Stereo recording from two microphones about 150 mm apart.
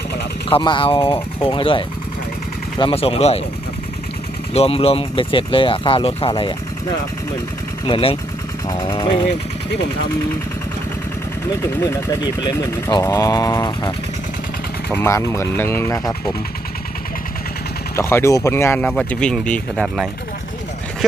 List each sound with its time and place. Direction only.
0.5 s speech: 35° left (ahead or behind)
4.5 s speech: 40° left (ahead or behind)
7.9 s speech: 35° left (ahead or behind)
11.8 s speech: 25° left (ahead or behind)
14.9 s speech: 20° left (ahead or behind)
17.9 s speech: 20° left (ahead or behind)